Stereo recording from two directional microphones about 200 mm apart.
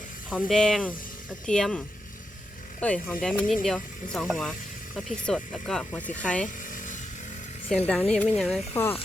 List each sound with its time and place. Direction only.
0.3 s speech: centre (ahead or behind)
2.8 s speech: 5° left (ahead or behind)
6.6 s a sound: 40° left (ahead or behind)
7.9 s speech: 5° left (ahead or behind)
8.7 s speech: 10° left (ahead or behind)